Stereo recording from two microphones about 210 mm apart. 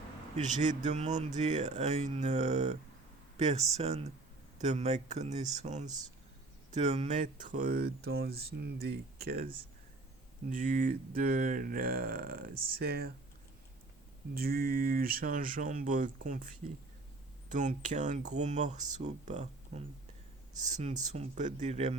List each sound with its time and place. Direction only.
0.9 s speech: 35° right (ahead or behind)
10.5 s speech: 40° right (ahead or behind)
14.3 s speech: 45° right (ahead or behind)
17.5 s speech: 35° right (ahead or behind)